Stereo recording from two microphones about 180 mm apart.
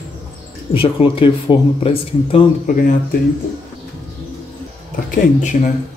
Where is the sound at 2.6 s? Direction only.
50° left (ahead or behind).